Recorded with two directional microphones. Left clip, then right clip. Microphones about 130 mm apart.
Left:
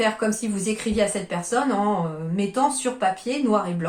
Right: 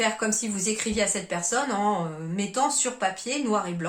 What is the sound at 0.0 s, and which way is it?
Speech, 20° right (ahead or behind).